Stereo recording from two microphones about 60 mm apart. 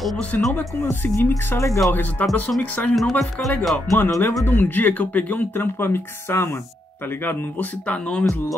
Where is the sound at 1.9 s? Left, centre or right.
Left.